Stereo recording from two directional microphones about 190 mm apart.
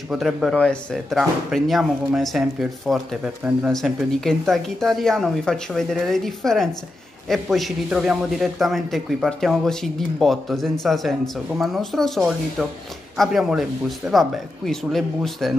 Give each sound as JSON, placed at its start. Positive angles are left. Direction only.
{"t": 0.1, "sound": "speech", "side_deg": 0}